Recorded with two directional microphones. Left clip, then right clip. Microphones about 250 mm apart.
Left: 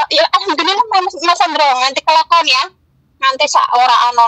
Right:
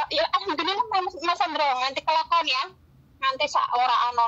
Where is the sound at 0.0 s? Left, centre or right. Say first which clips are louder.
Left 12 dB; centre.